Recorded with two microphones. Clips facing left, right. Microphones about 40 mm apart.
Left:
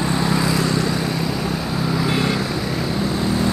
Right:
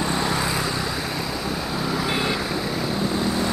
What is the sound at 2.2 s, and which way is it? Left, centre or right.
Vehicle, centre.